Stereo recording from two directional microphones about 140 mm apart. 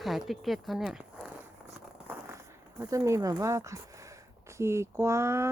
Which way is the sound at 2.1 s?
20° right (ahead or behind).